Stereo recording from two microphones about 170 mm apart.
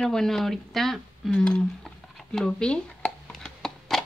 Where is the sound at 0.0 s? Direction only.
5° left (ahead or behind).